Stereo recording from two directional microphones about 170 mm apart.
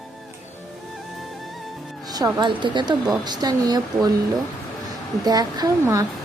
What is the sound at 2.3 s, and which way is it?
A woman's voice, 25° right (ahead or behind).